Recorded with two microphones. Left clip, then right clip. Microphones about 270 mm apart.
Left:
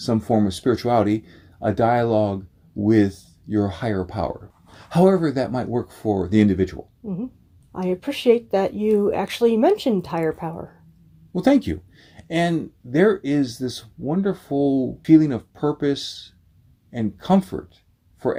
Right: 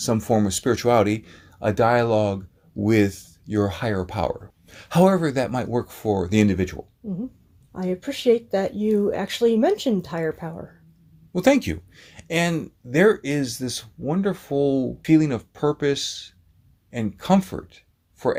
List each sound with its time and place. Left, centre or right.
0.0 s speech: right
7.0 s speech: centre
11.3 s speech: right